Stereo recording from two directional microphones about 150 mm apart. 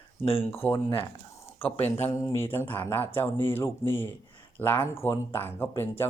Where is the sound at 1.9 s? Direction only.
15° left (ahead or behind).